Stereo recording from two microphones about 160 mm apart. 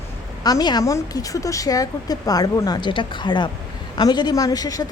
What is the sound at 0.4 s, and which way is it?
Speech, 25° left (ahead or behind).